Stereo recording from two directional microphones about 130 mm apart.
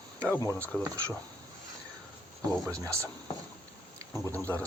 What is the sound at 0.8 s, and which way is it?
Speech, 25° right (ahead or behind).